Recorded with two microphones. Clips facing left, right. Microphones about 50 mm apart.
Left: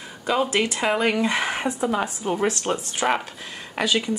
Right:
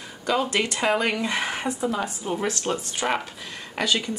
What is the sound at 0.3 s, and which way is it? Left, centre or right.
Speech, centre.